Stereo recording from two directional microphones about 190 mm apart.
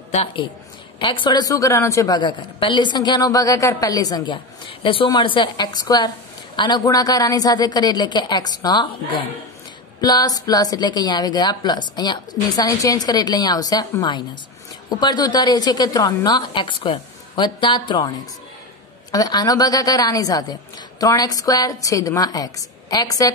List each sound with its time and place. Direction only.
0.1 s a man's voice: 35° left (ahead or behind)
9.9 s a woman's voice: 20° left (ahead or behind)